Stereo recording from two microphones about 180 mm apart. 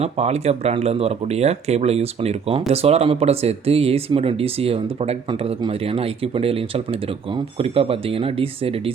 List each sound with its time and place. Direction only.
0.0 s speech: 35° right (ahead or behind)